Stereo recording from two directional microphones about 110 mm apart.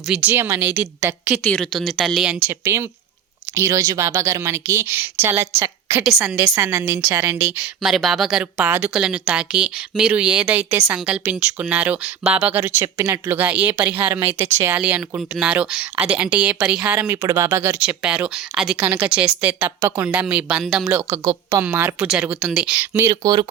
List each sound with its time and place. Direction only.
0.1 s speech: 15° right (ahead or behind)
1.1 s speech: 20° right (ahead or behind)
1.7 s speech: centre (ahead or behind)
2.5 s speech: 20° right (ahead or behind)
7.8 s speech: centre (ahead or behind)
8.5 s speech: 15° right (ahead or behind)
14.8 s speech: 10° right (ahead or behind)
17.2 s speech: 30° right (ahead or behind)
17.7 s speech: 10° right (ahead or behind)
19.8 s speech: 25° right (ahead or behind)
20.1 s speech: 10° right (ahead or behind)
22.0 s speech: 5° right (ahead or behind)
22.8 s speech: 20° right (ahead or behind)
23.2 s speech: 40° right (ahead or behind)